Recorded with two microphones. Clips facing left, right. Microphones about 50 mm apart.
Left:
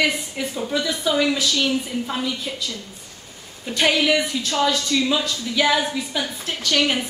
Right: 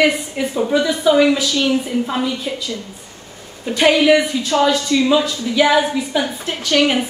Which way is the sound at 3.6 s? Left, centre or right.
Centre.